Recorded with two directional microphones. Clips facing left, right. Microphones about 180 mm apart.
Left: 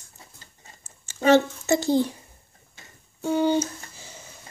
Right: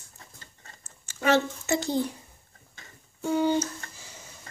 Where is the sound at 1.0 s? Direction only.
30° left (ahead or behind).